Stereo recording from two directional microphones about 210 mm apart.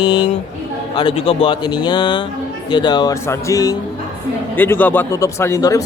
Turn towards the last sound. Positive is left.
turn(degrees=15)  # may be behind; listen again after turning